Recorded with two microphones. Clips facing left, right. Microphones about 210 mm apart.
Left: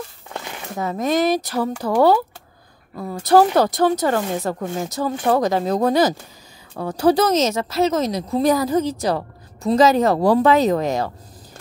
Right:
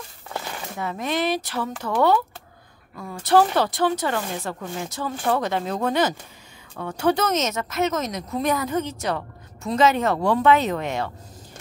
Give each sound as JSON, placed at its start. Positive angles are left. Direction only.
{"t": 0.7, "sound": "speech", "side_deg": 40}